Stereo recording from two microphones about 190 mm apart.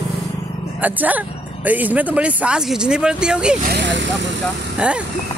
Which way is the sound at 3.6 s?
60° right (ahead or behind).